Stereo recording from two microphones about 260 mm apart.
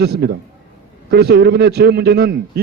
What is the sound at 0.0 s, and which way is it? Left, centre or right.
A man's voice, right.